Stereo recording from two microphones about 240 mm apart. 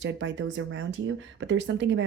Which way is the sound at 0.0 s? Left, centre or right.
Right.